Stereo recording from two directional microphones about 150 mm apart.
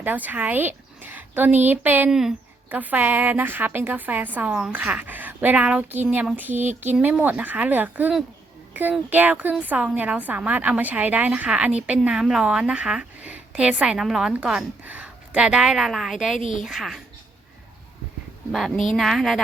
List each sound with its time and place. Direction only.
0.0 s a woman's voice: 10° right (ahead or behind)
16.4 s a woman's voice: 35° right (ahead or behind)
16.6 s a woman's voice: centre (ahead or behind)
18.5 s a woman's voice: centre (ahead or behind)